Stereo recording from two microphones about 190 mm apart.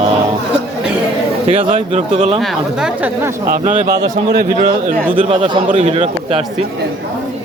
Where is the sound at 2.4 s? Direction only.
Centre (ahead or behind).